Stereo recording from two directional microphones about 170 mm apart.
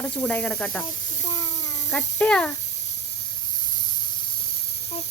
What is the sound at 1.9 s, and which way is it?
Speech, 5° left (ahead or behind).